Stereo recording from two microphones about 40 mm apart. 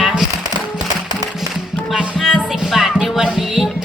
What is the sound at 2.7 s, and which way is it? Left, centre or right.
Music, centre.